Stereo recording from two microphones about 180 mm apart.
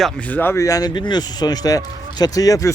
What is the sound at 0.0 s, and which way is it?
Speech, 10° left (ahead or behind).